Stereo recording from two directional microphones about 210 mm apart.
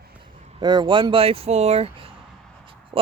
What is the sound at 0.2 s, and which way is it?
Speech, 20° right (ahead or behind).